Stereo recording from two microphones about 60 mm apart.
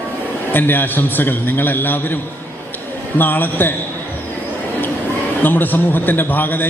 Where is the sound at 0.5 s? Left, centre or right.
Left.